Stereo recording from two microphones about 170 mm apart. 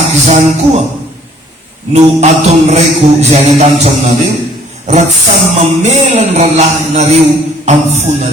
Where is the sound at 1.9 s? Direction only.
40° right (ahead or behind).